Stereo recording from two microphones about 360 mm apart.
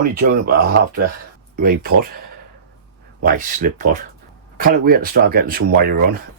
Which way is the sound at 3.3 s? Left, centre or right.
Right.